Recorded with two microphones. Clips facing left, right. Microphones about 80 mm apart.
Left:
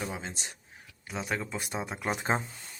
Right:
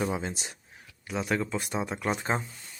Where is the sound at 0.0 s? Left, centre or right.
Centre.